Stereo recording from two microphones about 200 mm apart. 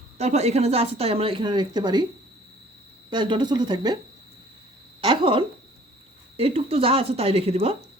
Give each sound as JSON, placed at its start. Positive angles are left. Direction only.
{"t": 0.2, "sound": "speech", "side_deg": -35}
{"t": 3.1, "sound": "speech", "side_deg": -20}
{"t": 4.9, "sound": "speech", "side_deg": -25}